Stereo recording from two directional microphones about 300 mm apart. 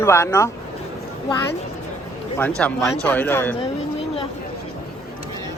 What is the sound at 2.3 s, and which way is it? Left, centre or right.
Speech, centre.